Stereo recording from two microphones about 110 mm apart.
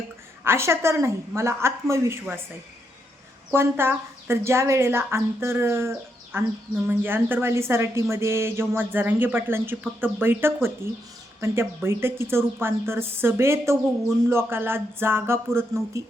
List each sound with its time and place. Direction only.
0.4 s a woman's voice: 25° right (ahead or behind)
3.5 s a woman's voice: 20° right (ahead or behind)